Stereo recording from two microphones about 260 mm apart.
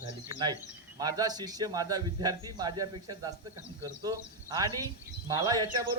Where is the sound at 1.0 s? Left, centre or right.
Centre.